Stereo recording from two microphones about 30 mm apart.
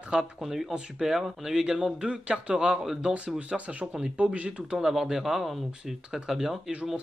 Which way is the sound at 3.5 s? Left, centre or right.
Right.